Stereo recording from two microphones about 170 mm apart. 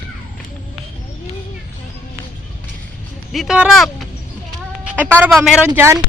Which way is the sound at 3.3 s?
Centre (ahead or behind).